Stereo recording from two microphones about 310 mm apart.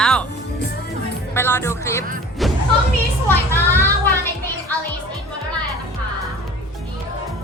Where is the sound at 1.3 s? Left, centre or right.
Centre.